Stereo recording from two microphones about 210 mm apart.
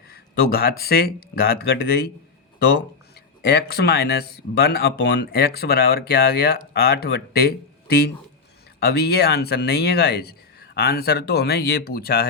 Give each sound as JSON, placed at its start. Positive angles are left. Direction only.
{"t": 0.1, "sound": "speech", "side_deg": 50}